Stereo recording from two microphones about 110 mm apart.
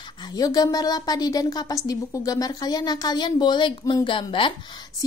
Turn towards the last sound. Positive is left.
turn(degrees=50)  # may be behind; listen again after turning